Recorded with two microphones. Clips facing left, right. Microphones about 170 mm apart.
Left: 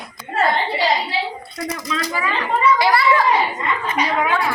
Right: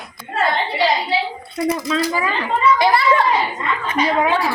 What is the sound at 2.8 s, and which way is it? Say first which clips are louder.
Speech: right 1 dB; 20° right (ahead or behind).